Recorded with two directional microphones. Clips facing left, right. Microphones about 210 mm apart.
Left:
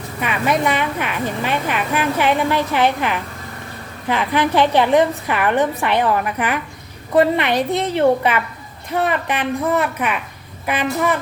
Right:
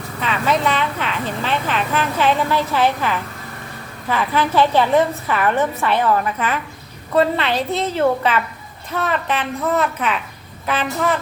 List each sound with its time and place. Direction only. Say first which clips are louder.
0.2 s speech: left 1 dB; 15° left (ahead or behind)